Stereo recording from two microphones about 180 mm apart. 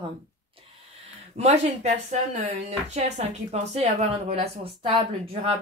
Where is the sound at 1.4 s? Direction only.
35° right (ahead or behind).